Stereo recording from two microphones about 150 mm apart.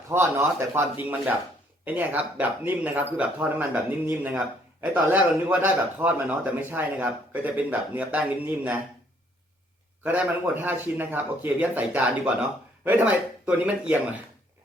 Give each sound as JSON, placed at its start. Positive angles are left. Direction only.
{"t": 0.1, "sound": "speech", "side_deg": -15}
{"t": 10.0, "sound": "speech", "side_deg": -10}